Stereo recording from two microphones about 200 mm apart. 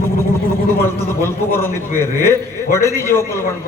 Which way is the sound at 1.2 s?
10° left (ahead or behind).